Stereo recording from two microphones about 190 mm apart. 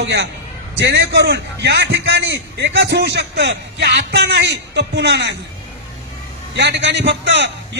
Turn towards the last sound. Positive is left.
turn(degrees=-65)  # may be behind; listen again after turning